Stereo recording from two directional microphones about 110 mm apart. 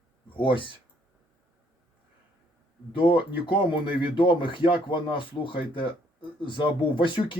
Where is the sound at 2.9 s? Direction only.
55° left (ahead or behind).